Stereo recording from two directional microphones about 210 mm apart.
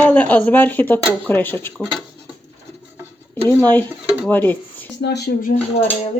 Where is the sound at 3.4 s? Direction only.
10° left (ahead or behind).